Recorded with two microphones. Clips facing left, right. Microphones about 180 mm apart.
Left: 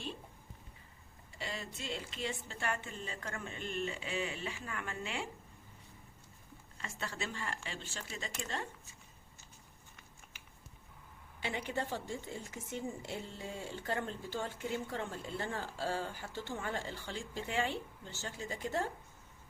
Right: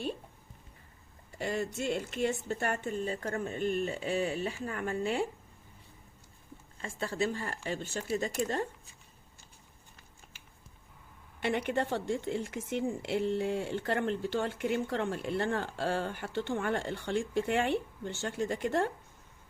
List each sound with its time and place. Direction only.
1.4 s speech: 50° right (ahead or behind)
1.7 s a sound: 65° right (ahead or behind)
2.5 s speech: 45° right (ahead or behind)
6.8 s speech: 35° right (ahead or behind)
11.3 s speech: 65° right (ahead or behind)